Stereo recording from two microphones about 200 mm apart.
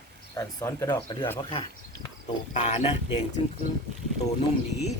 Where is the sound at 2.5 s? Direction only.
30° left (ahead or behind).